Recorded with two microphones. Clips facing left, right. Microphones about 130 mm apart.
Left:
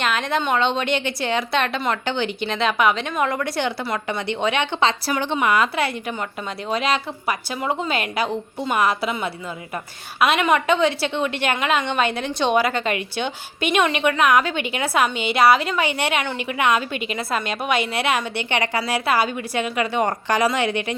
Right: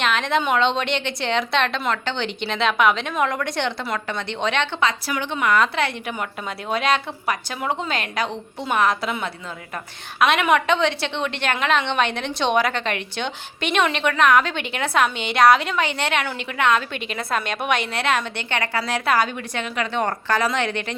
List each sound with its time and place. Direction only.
0.0 s a woman's voice: centre (ahead or behind)
4.8 s a woman's voice: 30° left (ahead or behind)
5.5 s a woman's voice: 5° left (ahead or behind)